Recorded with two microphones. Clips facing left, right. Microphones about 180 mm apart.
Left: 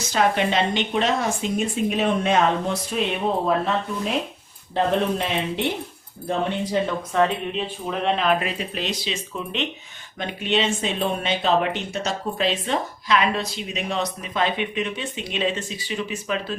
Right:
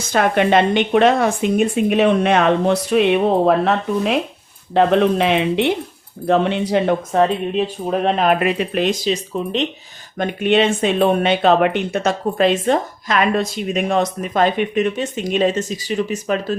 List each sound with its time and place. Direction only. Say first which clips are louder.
0.1 s a woman's voice: right 6 dB; 55° right (ahead or behind)
4.7 s a woman's voice: right 7 dB; 85° right
7.9 s speech: right 4 dB; 45° right (ahead or behind)
10.2 s speech: right 8 dB; 55° right (ahead or behind)